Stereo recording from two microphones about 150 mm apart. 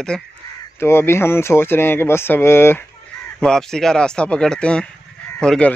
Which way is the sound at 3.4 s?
5° left (ahead or behind).